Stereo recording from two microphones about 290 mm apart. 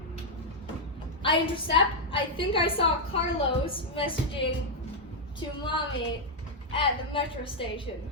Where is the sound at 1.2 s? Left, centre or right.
Centre.